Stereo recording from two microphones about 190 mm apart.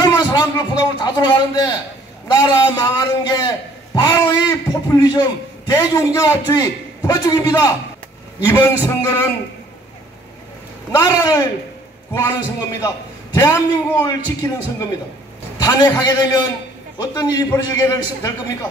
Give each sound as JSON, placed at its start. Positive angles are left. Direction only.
{"t": 0.0, "sound": "a man's voice", "side_deg": 20}
{"t": 11.0, "sound": "a man's voice", "side_deg": 20}